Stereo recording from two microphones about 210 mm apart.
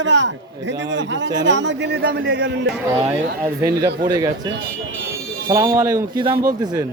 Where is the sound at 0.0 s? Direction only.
60° right (ahead or behind).